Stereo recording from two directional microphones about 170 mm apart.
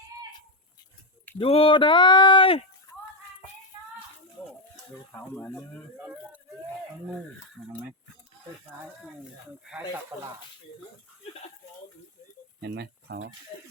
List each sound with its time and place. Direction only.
1.4 s speech: 35° left (ahead or behind)
2.9 s music: 20° left (ahead or behind)
5.1 s speech: 10° left (ahead or behind)
9.6 s speech: 5° right (ahead or behind)
12.6 s speech: 75° right (ahead or behind)